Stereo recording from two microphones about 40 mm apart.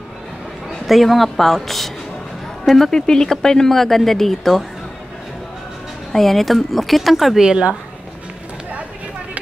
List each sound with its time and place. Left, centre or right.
0.7 s a man's voice: centre
6.1 s speech: centre
7.3 s a woman's voice: right